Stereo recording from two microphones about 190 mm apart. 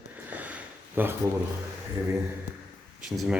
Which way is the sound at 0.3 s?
10° right (ahead or behind).